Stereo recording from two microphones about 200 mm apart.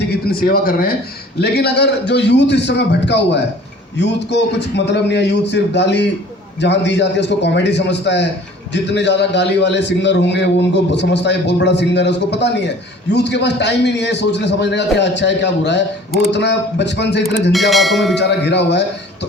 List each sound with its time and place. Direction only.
0.1 s a man's voice: 50° left (ahead or behind)
17.5 s speech: centre (ahead or behind)
18.1 s a man's voice: 60° left (ahead or behind)